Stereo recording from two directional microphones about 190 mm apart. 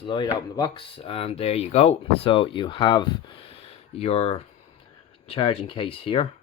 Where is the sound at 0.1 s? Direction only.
20° left (ahead or behind).